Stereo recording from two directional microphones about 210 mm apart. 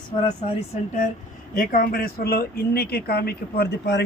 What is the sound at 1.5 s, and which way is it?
Speech, 40° left (ahead or behind).